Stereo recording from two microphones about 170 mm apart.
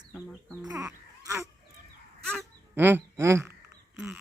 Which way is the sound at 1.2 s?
20° right (ahead or behind).